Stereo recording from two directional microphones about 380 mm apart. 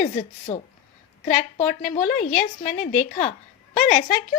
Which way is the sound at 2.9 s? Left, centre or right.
Centre.